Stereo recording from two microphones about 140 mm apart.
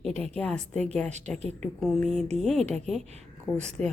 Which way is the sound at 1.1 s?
55° right (ahead or behind).